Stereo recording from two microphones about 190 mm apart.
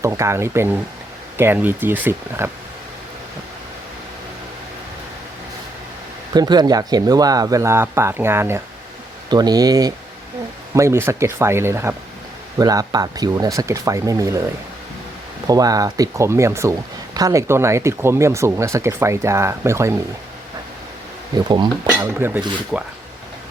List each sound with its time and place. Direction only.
0.0 s speech: 15° right (ahead or behind)
6.3 s speech: 20° right (ahead or behind)
15.4 s speech: 20° right (ahead or behind)
21.3 s speech: 25° right (ahead or behind)
21.9 s speech: 10° right (ahead or behind)